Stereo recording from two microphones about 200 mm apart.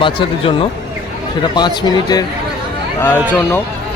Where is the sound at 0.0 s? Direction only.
25° left (ahead or behind).